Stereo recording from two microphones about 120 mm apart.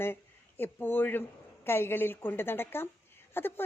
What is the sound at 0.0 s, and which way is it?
A woman's voice, 20° left (ahead or behind).